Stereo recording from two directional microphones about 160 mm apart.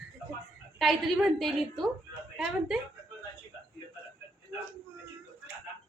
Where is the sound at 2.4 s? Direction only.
5° right (ahead or behind).